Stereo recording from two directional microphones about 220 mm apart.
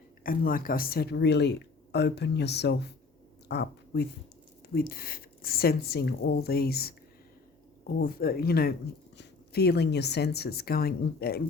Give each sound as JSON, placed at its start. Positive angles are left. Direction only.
{"t": 0.2, "sound": "speech", "side_deg": 40}